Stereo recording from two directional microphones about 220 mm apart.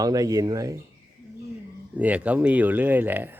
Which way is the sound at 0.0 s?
15° right (ahead or behind).